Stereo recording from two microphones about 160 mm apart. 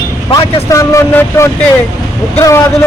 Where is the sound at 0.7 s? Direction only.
20° left (ahead or behind).